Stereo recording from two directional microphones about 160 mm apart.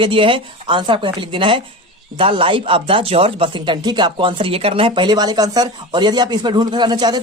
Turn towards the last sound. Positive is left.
turn(degrees=-25)  # may be behind; listen again after turning